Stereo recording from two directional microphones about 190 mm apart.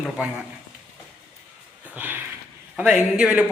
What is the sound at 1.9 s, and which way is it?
A man's voice, 10° right (ahead or behind).